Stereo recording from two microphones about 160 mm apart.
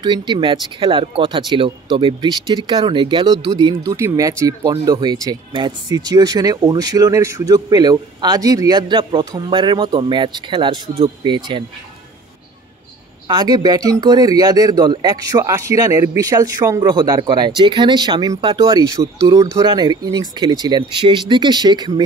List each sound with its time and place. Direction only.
0.0 s speech: 30° right (ahead or behind)
13.3 s speech: 25° right (ahead or behind)